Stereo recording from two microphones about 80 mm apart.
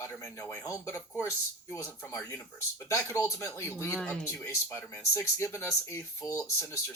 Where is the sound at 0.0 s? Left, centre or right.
Left.